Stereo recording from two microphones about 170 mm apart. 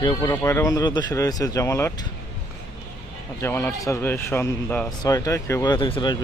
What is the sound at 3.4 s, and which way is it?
A man's voice, 15° left (ahead or behind).